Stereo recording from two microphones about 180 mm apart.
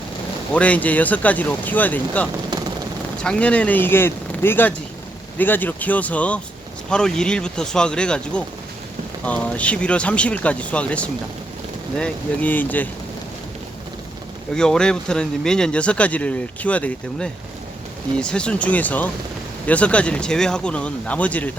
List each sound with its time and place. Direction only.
0.5 s speech: 10° left (ahead or behind)
2.5 s a sound: 25° right (ahead or behind)
3.2 s speech: 5° left (ahead or behind)
14.5 s speech: 5° left (ahead or behind)